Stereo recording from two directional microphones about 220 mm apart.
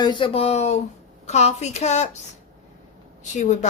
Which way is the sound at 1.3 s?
30° left (ahead or behind).